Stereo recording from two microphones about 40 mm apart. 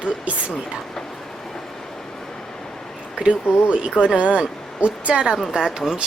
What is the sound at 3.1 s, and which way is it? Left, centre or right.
Speech, right.